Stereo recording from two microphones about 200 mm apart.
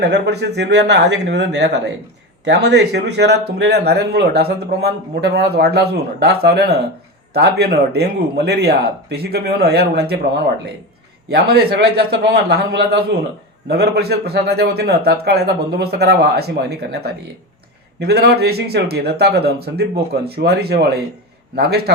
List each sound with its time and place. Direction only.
0.0 s speech: 55° right (ahead or behind)
11.3 s speech: 50° right (ahead or behind)